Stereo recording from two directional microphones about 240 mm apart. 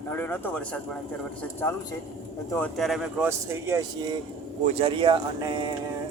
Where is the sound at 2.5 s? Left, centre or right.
Centre.